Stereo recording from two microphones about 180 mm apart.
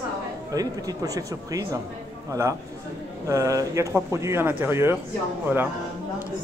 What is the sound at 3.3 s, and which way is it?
A man's voice, 20° right (ahead or behind).